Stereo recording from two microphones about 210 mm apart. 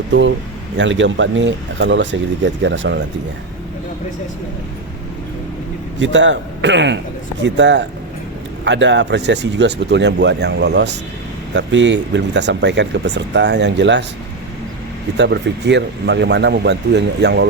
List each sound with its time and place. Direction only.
0.1 s speech: 60° right (ahead or behind)
6.0 s speech: 60° right (ahead or behind)
15.2 s speech: 55° right (ahead or behind)